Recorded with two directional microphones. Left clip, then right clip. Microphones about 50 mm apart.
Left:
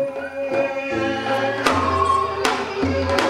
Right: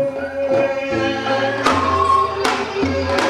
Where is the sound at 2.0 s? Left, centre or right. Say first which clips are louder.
Right 3 dB; centre.